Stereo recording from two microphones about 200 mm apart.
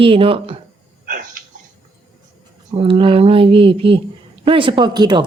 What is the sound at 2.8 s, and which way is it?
Speech, 25° right (ahead or behind).